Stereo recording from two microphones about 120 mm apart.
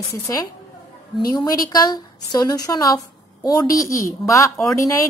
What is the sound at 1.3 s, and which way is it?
A woman's voice, 35° left (ahead or behind).